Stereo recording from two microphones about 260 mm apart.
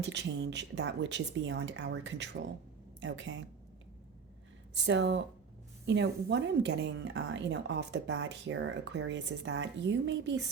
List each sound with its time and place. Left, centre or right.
0.0 s a woman's voice: right
4.9 s a woman's voice: right